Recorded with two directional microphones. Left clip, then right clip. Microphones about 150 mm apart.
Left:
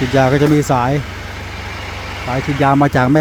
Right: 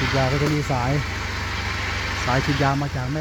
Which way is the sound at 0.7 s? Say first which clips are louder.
Left 9 dB; 35° left (ahead or behind).